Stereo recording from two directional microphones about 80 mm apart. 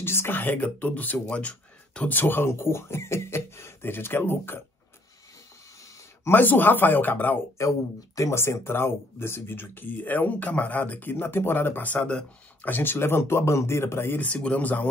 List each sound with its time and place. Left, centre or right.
0.0 s speech: left
2.1 s speech: left
6.2 s speech: left
7.6 s speech: left; by 12.3 s centre
12.6 s speech: left
14.2 s speech: centre